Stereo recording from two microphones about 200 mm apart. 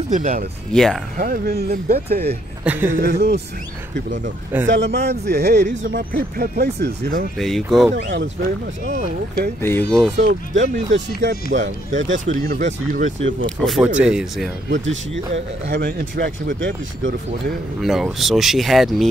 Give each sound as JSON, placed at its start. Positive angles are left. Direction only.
{"t": 0.1, "sound": "speech", "side_deg": -40}
{"t": 0.7, "sound": "speech", "side_deg": 5}
{"t": 1.1, "sound": "speech", "side_deg": -45}
{"t": 2.6, "sound": "speech", "side_deg": -10}
{"t": 3.0, "sound": "speech", "side_deg": -55}
{"t": 4.6, "sound": "speech", "side_deg": -60}
{"t": 7.3, "sound": "speech", "side_deg": 0}
{"t": 8.8, "sound": "speech", "side_deg": -40}
{"t": 9.6, "sound": "speech", "side_deg": 10}
{"t": 10.1, "sound": "speech", "side_deg": -65}
{"t": 11.5, "sound": "speech", "side_deg": -40}
{"t": 13.6, "sound": "speech", "side_deg": 0}
{"t": 14.7, "sound": "speech", "side_deg": -65}
{"t": 17.7, "sound": "speech", "side_deg": 0}